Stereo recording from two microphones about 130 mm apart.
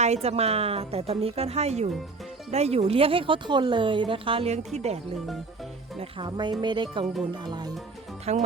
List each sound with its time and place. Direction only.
0.0 s speech: 55° right (ahead or behind)
6.0 s speech: 40° right (ahead or behind)
8.2 s speech: 60° right (ahead or behind)